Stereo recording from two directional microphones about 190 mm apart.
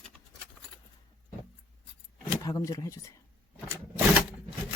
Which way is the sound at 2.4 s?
20° left (ahead or behind).